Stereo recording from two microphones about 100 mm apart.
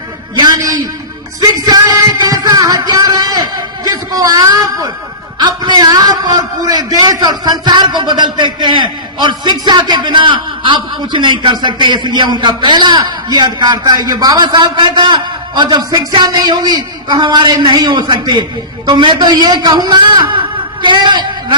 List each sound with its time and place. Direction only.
0.3 s a man's voice: 40° right (ahead or behind)
1.6 s music: 40° right (ahead or behind)
4.1 s a woman's voice: 35° right (ahead or behind)